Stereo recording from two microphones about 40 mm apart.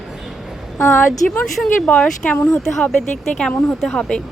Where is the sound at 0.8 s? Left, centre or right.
Left.